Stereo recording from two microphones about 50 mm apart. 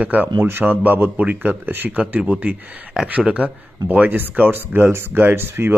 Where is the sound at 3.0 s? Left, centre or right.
Centre.